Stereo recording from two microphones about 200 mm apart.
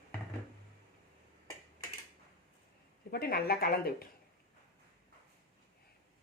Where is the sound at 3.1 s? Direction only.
50° left (ahead or behind).